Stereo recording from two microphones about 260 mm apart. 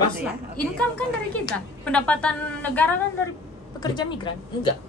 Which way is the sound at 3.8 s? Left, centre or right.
Centre.